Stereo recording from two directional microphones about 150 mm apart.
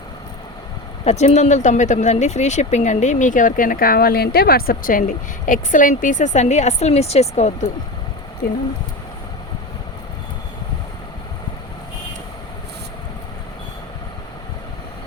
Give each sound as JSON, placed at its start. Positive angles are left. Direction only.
{"t": 1.0, "sound": "speech", "side_deg": 45}